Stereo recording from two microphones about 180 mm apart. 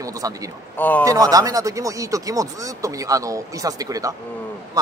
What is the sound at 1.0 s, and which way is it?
Speech, 20° right (ahead or behind).